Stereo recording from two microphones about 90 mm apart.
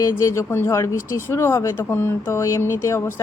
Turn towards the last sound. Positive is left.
turn(degrees=30)  # may be behind; listen again after turning